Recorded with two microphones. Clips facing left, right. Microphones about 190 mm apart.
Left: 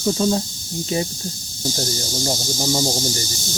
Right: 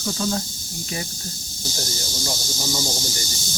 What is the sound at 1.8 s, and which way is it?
Speech, 35° left (ahead or behind).